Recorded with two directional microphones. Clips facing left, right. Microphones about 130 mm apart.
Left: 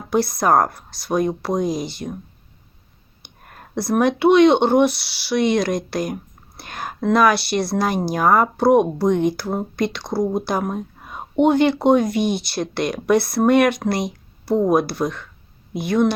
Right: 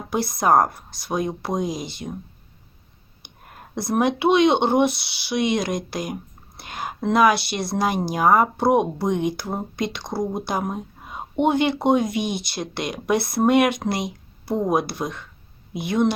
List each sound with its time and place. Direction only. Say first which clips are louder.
0.1 s speech: left 2 dB; 20° right (ahead or behind)
3.8 s speech: left 3 dB; 20° right (ahead or behind)